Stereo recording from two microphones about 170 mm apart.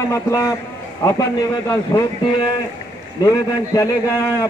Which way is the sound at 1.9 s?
15° left (ahead or behind).